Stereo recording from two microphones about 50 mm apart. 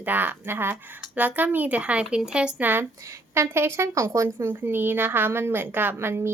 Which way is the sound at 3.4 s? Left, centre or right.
Right.